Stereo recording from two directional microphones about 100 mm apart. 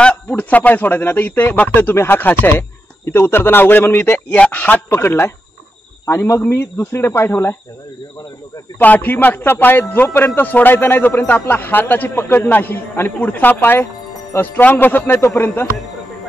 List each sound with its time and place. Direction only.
0.0 s speech: 15° left (ahead or behind)
8.7 s speech: 15° left (ahead or behind)